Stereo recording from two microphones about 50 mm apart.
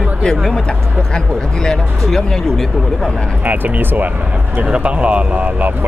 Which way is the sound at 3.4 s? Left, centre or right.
Right.